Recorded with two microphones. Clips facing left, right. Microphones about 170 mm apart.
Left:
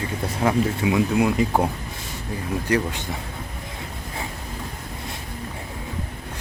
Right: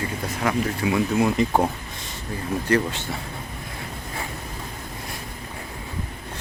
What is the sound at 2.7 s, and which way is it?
Speech, 15° left (ahead or behind).